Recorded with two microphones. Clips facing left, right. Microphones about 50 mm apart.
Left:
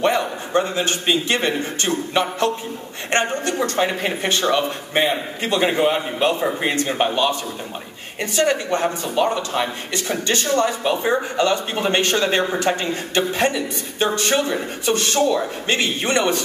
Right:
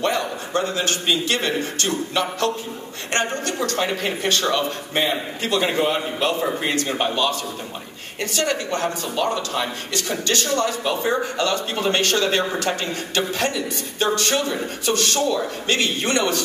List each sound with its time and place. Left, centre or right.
0.0 s a man's voice: left